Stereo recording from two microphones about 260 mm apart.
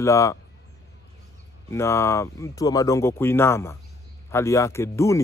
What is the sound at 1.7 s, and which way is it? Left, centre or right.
A man's voice, centre.